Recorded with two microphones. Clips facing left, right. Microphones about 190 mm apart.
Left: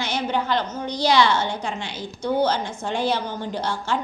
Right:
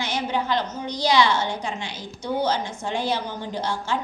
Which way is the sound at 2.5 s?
55° left (ahead or behind).